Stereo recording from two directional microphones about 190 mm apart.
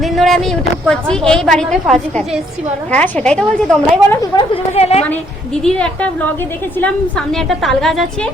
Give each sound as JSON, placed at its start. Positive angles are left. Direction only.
{"t": 0.0, "sound": "a woman's voice", "side_deg": 0}
{"t": 4.2, "sound": "a woman's voice", "side_deg": 25}
{"t": 5.6, "sound": "speech", "side_deg": 5}